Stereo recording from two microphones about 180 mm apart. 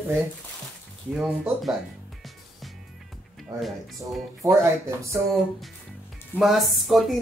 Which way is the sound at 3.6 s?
Centre (ahead or behind).